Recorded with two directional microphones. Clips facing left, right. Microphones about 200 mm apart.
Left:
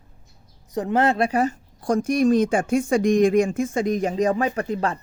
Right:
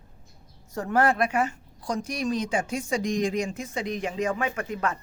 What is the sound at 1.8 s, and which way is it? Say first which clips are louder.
Speech: left 10 dB; 50° left (ahead or behind).